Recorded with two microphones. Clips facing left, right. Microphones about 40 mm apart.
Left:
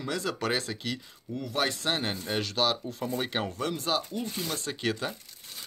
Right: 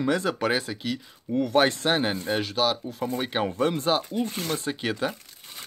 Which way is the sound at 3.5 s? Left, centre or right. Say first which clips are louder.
Right 6 dB; right.